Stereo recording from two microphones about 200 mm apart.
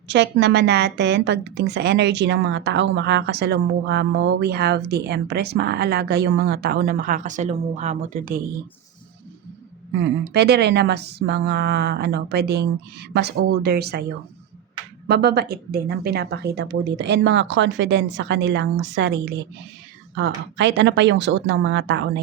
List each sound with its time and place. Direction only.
0.1 s a woman's voice: 60° right (ahead or behind); by 8.4 s 45° right (ahead or behind)
10.0 s a woman's voice: 55° right (ahead or behind)
15.0 s a woman's voice: 55° right (ahead or behind)